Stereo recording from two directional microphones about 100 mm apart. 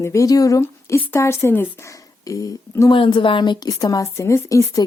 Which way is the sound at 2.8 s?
55° left (ahead or behind).